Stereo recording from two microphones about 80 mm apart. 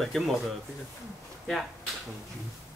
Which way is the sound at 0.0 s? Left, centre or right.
Centre.